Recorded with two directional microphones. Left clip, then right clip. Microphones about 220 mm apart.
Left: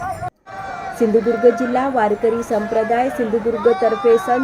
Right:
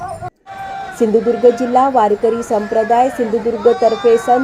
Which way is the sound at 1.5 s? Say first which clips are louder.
Right 6 dB; 5° right (ahead or behind).